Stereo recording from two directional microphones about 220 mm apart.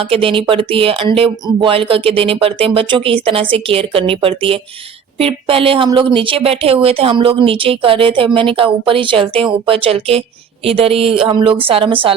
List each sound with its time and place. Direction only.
0.1 s a woman's voice: 25° right (ahead or behind)